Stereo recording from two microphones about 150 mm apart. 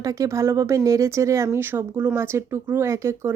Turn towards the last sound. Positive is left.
turn(degrees=-20)  # may be behind; listen again after turning